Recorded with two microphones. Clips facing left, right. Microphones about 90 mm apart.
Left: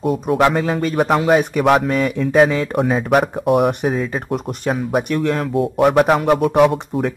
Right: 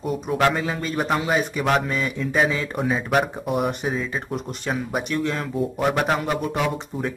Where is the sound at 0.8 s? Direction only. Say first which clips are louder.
Left 8 dB; 50° left (ahead or behind).